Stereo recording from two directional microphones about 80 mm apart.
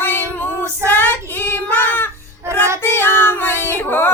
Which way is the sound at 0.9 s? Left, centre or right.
Left.